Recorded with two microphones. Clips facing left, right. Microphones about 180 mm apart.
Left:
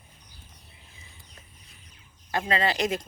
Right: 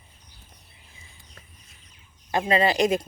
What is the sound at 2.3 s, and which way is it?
Speech, 20° right (ahead or behind).